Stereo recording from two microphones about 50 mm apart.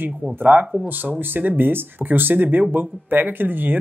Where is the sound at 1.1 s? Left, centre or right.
Right.